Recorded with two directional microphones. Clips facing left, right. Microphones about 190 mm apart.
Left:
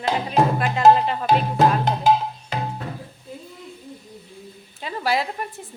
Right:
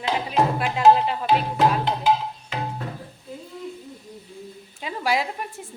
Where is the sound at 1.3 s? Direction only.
45° left (ahead or behind).